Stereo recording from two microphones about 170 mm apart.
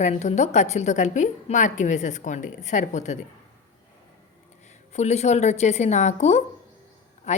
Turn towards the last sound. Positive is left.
turn(degrees=40)  # may be behind; listen again after turning